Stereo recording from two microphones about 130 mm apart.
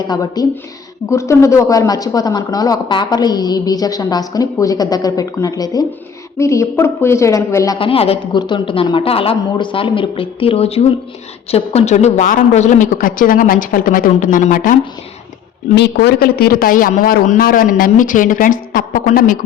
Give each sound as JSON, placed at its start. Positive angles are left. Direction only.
{"t": 0.1, "sound": "speech", "side_deg": 30}
{"t": 7.8, "sound": "a woman's voice", "side_deg": 45}
{"t": 16.6, "sound": "a woman's voice", "side_deg": 90}